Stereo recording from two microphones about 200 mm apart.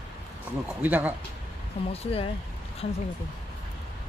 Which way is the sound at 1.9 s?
30° left (ahead or behind).